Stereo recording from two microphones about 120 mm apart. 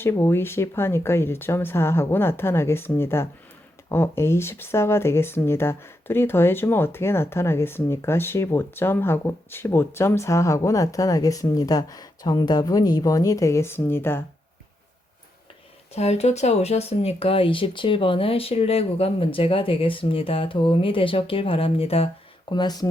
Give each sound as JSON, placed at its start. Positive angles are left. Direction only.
{"t": 0.0, "sound": "speech", "side_deg": 20}
{"t": 15.9, "sound": "speech", "side_deg": 65}
{"t": 22.4, "sound": "speech", "side_deg": 35}